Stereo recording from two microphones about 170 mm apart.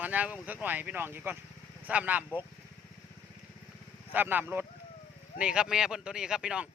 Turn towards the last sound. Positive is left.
turn(degrees=-5)  # may be behind; listen again after turning